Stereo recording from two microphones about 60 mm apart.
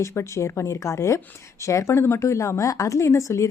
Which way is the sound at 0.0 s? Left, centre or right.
Left.